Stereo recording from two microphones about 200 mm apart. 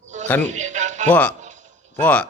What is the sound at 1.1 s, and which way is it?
Speech, 5° left (ahead or behind).